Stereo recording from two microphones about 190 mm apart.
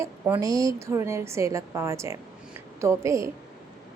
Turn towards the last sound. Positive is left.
turn(degrees=-15)  # may be behind; listen again after turning